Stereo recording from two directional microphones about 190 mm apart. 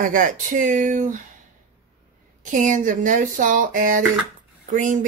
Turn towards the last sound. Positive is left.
turn(degrees=-45)  # may be behind; listen again after turning